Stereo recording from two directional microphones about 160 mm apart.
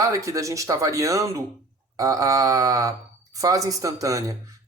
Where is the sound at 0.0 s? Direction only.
20° right (ahead or behind).